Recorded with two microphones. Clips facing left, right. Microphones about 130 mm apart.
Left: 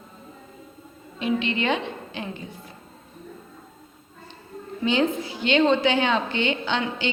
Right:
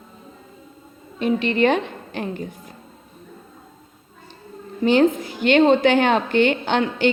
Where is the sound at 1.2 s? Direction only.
45° right (ahead or behind).